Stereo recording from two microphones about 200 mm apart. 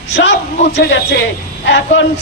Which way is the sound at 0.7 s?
60° left (ahead or behind).